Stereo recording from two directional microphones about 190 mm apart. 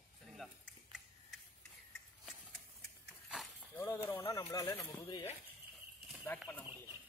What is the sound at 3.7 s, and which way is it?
Speech, 10° left (ahead or behind).